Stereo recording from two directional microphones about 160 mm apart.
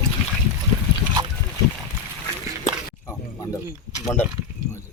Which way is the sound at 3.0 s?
20° left (ahead or behind).